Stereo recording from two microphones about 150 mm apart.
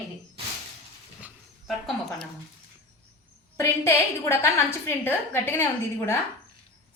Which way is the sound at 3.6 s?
15° left (ahead or behind).